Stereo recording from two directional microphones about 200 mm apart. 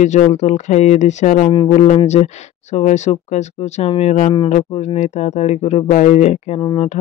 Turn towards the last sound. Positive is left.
turn(degrees=30)  # may be behind; listen again after turning